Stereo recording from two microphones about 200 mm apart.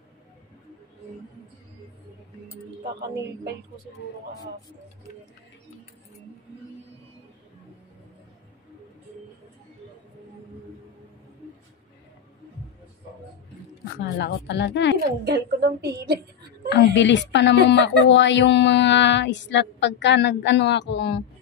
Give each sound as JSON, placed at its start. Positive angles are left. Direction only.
{"t": 13.9, "sound": "a woman's voice", "side_deg": 60}
{"t": 15.2, "sound": "a woman's voice", "side_deg": -50}
{"t": 16.6, "sound": "a woman's voice", "side_deg": 60}